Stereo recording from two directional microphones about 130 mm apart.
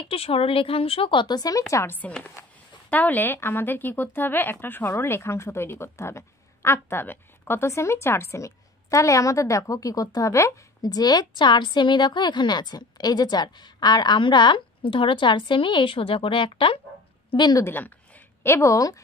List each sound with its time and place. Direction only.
0.1 s speech: 45° left (ahead or behind); by 1.6 s 30° left (ahead or behind)
1.7 s speech: 20° left (ahead or behind); by 16.8 s 45° left (ahead or behind)
17.3 s a woman's voice: 30° left (ahead or behind)
17.6 s speech: 15° left (ahead or behind)